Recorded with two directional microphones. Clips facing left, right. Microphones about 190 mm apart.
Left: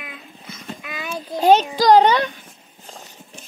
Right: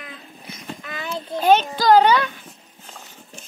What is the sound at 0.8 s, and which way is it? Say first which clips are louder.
Child singing: even; 15° left (ahead or behind).